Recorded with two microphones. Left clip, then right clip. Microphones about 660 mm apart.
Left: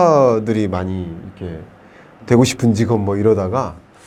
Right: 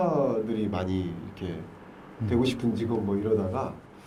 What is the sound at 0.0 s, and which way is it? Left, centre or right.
Speech, left.